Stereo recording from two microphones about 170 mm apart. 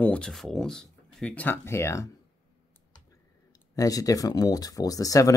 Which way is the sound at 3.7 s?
20° left (ahead or behind).